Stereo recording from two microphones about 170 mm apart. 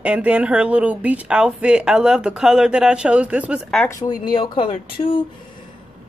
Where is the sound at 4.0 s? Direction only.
25° left (ahead or behind).